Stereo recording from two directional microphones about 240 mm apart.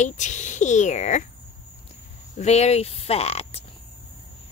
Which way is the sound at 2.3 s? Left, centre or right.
Left.